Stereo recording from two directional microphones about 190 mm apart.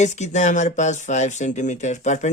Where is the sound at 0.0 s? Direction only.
40° left (ahead or behind).